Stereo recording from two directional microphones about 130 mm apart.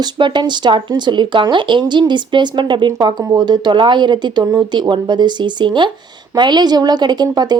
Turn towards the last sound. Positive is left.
turn(degrees=-30)  # may be behind; listen again after turning